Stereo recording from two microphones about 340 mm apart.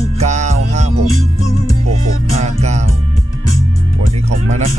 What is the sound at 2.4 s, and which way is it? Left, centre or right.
Speech, centre.